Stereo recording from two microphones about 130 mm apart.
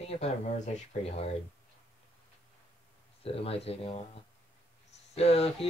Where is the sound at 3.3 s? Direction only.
50° left (ahead or behind).